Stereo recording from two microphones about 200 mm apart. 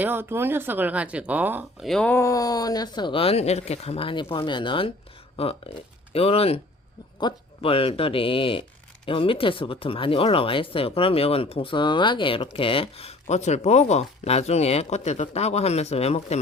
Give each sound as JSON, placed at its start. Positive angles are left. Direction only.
{"t": 0.0, "sound": "speech", "side_deg": -10}
{"t": 1.9, "sound": "speech", "side_deg": 5}